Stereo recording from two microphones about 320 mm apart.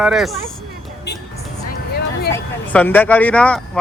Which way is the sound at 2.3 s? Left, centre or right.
Centre.